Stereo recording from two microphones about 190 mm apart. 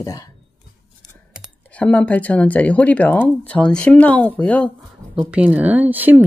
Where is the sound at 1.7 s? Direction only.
5° left (ahead or behind).